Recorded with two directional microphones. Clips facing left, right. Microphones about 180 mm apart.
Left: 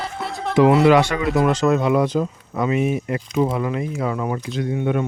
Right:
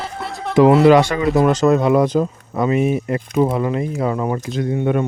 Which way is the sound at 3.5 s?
35° right (ahead or behind).